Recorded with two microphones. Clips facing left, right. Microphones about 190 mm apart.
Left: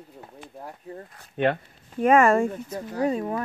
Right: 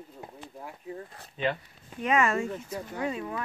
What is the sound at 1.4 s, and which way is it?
Speech, 55° left (ahead or behind).